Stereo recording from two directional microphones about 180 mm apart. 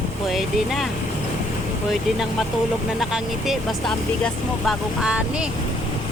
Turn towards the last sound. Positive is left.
turn(degrees=-5)  # may be behind; listen again after turning